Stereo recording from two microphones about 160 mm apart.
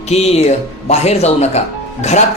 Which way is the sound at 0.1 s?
40° left (ahead or behind).